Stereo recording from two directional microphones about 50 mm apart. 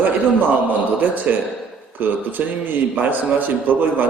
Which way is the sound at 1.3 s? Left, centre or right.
Right.